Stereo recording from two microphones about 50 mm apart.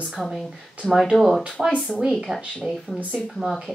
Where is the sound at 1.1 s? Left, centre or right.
Centre.